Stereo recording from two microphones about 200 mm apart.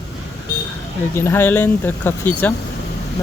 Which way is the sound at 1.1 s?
10° left (ahead or behind).